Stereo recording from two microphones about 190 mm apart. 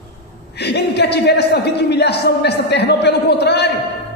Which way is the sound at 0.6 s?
60° left (ahead or behind).